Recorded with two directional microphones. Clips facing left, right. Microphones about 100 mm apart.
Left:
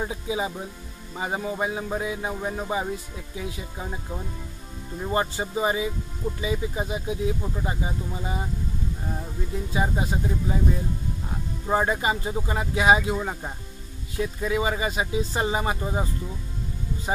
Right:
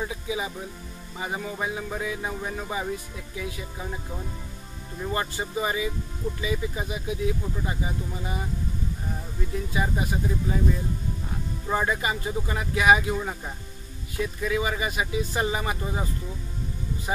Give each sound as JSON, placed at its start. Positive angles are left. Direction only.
{"t": 0.0, "sound": "speech", "side_deg": 25}
{"t": 9.7, "sound": "speech", "side_deg": 25}
{"t": 11.6, "sound": "speech", "side_deg": 25}